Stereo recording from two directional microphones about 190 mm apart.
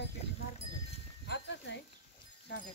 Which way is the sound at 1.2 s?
65° left (ahead or behind).